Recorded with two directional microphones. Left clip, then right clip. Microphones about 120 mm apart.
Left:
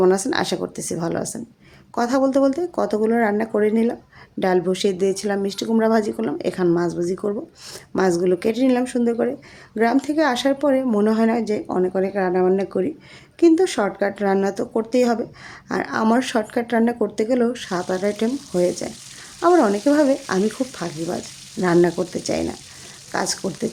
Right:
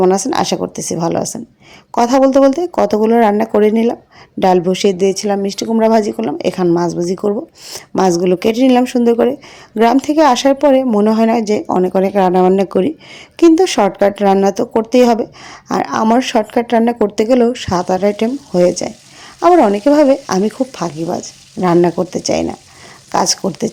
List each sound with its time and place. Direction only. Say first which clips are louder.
0.1 s a woman's voice: right 6 dB; 40° right (ahead or behind); by 12.5 s 60° right (ahead or behind)
13.4 s a woman's voice: right 7 dB; 45° right (ahead or behind)